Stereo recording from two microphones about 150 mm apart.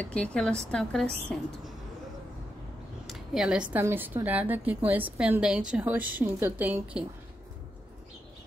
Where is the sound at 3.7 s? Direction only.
15° right (ahead or behind).